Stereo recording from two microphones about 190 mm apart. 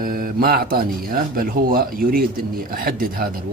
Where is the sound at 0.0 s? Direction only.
50° right (ahead or behind).